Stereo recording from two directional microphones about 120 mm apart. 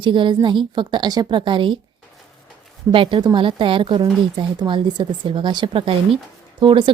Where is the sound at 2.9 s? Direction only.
45° right (ahead or behind).